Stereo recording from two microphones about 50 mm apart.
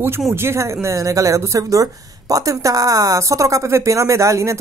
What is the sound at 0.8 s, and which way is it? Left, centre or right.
A woman's voice, right.